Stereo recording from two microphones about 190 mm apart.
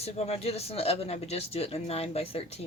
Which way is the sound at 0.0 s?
35° left (ahead or behind).